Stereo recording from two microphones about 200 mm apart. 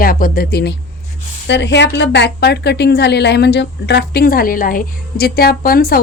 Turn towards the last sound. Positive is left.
turn(degrees=50)  # may be behind; listen again after turning